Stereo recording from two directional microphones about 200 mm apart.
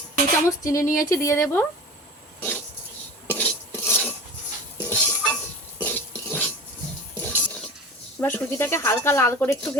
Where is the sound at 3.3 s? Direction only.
10° left (ahead or behind).